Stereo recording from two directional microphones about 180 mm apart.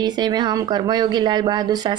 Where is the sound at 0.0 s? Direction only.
25° right (ahead or behind).